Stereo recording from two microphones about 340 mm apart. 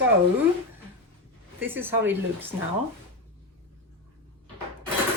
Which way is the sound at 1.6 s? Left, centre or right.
Centre.